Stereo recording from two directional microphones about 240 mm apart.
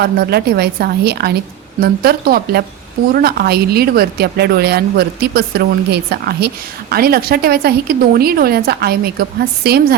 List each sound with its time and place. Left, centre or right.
0.0 s a woman's voice: right